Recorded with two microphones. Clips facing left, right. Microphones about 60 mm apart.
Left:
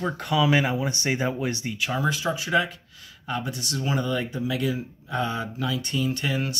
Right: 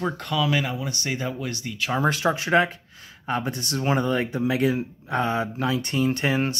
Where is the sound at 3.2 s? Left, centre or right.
Right.